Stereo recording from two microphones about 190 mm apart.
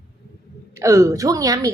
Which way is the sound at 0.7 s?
15° right (ahead or behind).